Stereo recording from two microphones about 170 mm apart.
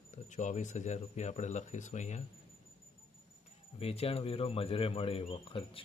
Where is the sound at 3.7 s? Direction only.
35° left (ahead or behind).